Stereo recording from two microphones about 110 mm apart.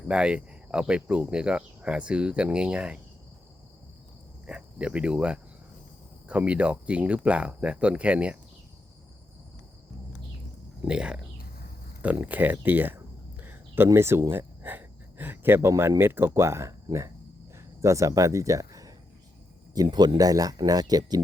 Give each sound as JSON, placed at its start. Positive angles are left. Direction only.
{"t": 0.1, "sound": "speech", "side_deg": -10}
{"t": 4.4, "sound": "speech", "side_deg": -10}
{"t": 10.8, "sound": "speech", "side_deg": -10}
{"t": 17.5, "sound": "a sound", "side_deg": -25}
{"t": 19.7, "sound": "speech", "side_deg": -35}